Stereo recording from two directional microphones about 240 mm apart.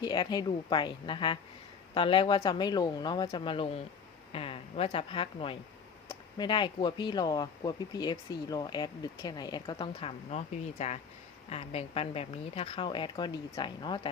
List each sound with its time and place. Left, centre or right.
0.0 s speech: centre